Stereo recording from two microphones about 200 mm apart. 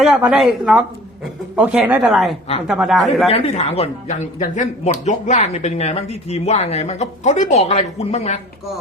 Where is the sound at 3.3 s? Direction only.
30° left (ahead or behind).